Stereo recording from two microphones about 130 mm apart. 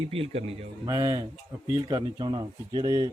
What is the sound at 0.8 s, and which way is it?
Speech, 25° right (ahead or behind).